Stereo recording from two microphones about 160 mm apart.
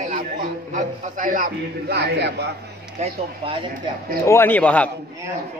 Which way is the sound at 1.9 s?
90° right.